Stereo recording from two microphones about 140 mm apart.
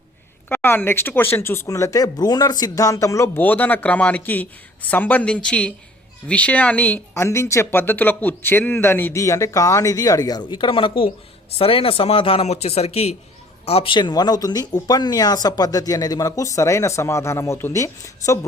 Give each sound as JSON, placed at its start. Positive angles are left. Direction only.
{"t": 0.4, "sound": "speech", "side_deg": 15}